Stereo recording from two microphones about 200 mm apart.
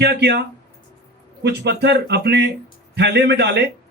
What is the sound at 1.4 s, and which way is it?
A man's voice, 60° right (ahead or behind).